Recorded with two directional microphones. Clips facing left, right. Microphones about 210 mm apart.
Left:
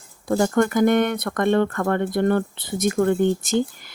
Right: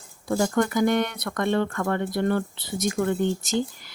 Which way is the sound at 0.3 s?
55° left (ahead or behind).